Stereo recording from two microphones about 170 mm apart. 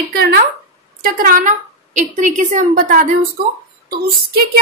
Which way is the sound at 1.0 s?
55° right (ahead or behind).